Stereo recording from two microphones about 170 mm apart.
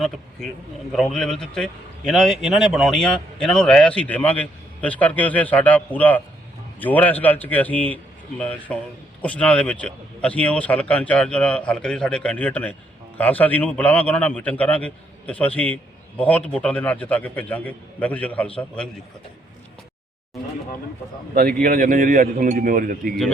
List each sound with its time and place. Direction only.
0.0 s a man's voice: 5° left (ahead or behind)
21.3 s a man's voice: 60° right (ahead or behind)